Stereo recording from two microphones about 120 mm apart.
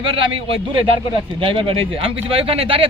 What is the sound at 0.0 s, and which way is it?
Speech, 50° right (ahead or behind).